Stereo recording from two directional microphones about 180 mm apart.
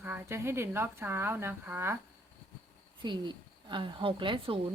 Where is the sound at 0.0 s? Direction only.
10° right (ahead or behind).